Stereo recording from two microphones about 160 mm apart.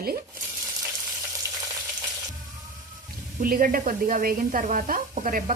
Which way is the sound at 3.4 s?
60° right (ahead or behind).